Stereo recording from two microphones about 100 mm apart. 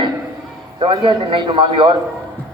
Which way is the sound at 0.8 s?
55° right (ahead or behind).